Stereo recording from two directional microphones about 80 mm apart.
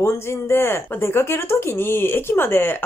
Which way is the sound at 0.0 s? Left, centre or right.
Left.